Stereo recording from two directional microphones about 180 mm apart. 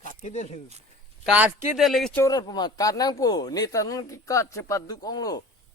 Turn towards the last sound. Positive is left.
turn(degrees=20)  # may be behind; listen again after turning